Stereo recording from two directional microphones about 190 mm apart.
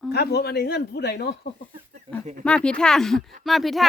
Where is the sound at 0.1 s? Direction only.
60° left (ahead or behind).